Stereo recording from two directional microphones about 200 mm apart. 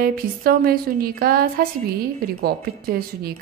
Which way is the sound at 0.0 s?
50° right (ahead or behind).